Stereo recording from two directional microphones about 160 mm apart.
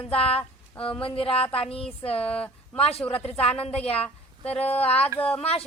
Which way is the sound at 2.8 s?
40° left (ahead or behind).